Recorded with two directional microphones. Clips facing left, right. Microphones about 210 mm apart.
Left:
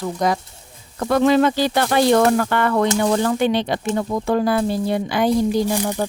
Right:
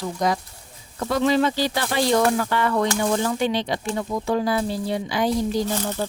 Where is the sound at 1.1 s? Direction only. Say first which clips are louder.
Left 5 dB; 55° left (ahead or behind).